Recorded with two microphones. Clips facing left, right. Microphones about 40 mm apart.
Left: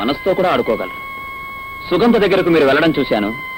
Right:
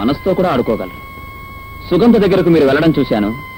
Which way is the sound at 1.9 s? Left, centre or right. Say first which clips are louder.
Right 2 dB; left.